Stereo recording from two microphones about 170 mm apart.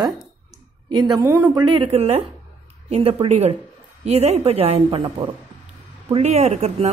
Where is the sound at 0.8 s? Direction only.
25° right (ahead or behind).